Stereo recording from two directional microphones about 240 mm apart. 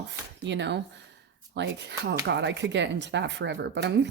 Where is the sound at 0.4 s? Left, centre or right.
Right.